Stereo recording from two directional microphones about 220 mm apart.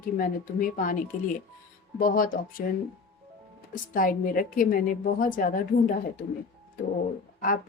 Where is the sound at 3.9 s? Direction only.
40° left (ahead or behind).